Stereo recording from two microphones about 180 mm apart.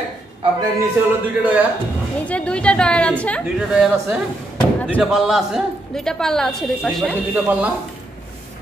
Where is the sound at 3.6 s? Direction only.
5° right (ahead or behind).